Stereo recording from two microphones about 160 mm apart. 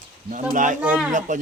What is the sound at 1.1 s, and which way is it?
Speech, 55° right (ahead or behind).